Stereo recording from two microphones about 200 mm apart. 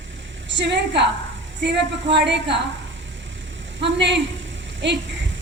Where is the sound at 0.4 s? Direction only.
60° right (ahead or behind).